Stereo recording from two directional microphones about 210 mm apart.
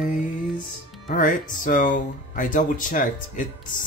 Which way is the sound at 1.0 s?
40° left (ahead or behind).